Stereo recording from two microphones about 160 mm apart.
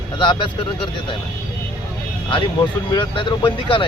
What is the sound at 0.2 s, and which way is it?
Speech, 30° left (ahead or behind).